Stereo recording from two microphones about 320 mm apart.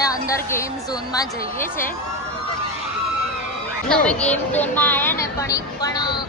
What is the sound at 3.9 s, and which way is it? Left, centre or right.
A woman's voice, centre.